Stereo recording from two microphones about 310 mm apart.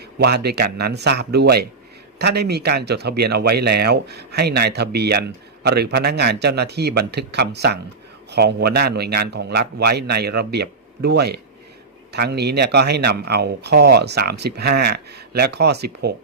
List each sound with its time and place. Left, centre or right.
0.2 s speech: right